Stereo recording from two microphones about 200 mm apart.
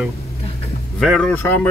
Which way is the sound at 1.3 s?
10° left (ahead or behind).